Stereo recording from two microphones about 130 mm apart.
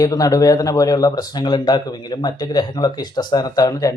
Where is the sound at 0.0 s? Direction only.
30° left (ahead or behind).